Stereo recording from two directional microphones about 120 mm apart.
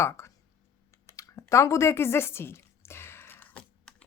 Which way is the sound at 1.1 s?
25° left (ahead or behind).